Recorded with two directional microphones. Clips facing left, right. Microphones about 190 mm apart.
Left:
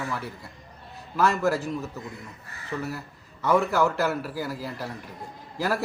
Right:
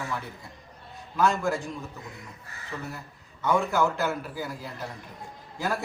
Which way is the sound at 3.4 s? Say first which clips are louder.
Left 2 dB; centre (ahead or behind).